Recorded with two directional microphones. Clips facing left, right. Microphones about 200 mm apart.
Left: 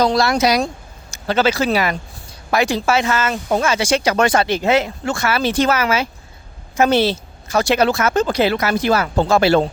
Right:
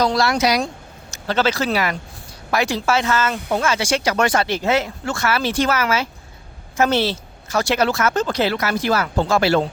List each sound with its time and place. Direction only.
0.0 s speech: 20° left (ahead or behind)
1.1 s speech: 10° left (ahead or behind)